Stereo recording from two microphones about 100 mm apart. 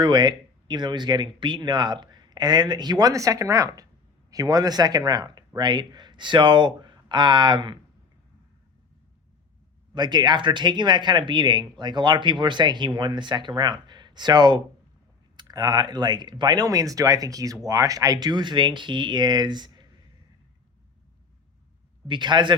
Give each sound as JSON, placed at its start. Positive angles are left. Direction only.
{"t": 0.0, "sound": "speech", "side_deg": -45}
{"t": 9.9, "sound": "speech", "side_deg": -45}
{"t": 22.0, "sound": "speech", "side_deg": -50}